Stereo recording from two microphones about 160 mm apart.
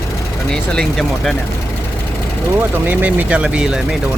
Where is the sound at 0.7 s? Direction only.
5° left (ahead or behind).